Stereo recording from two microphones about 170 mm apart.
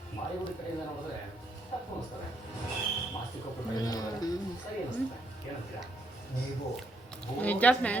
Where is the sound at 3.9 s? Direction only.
20° left (ahead or behind).